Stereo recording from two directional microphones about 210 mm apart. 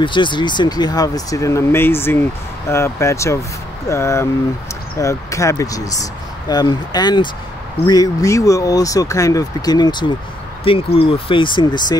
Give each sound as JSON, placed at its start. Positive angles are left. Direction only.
{"t": 0.0, "sound": "speech", "side_deg": 20}